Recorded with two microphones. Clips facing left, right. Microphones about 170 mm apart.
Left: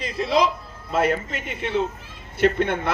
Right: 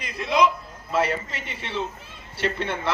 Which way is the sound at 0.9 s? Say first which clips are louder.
Left 3 dB; 50° left (ahead or behind).